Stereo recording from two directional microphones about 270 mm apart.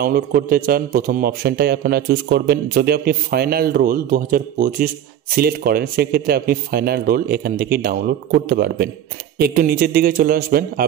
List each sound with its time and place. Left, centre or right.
0.0 s a man's voice: right